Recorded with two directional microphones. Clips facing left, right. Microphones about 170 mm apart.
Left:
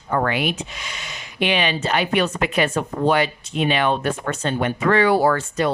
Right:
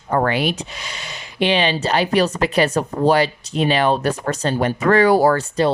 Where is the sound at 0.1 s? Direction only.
35° right (ahead or behind).